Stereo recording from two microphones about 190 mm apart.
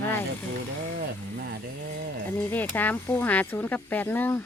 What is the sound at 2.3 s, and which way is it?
Speech, 10° left (ahead or behind).